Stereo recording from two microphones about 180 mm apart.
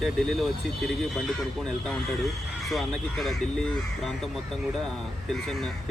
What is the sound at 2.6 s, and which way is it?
Speech, centre (ahead or behind).